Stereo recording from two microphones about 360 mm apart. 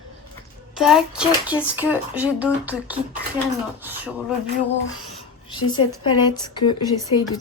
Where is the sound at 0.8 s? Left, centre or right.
Centre.